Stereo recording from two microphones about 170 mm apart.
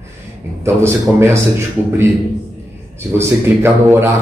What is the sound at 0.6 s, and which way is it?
Speech, 15° right (ahead or behind).